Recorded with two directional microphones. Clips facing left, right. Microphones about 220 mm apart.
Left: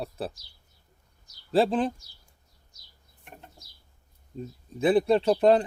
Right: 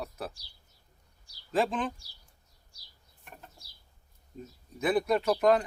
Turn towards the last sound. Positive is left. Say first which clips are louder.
# left 4 dB
turn(degrees=30)  # may be behind; listen again after turning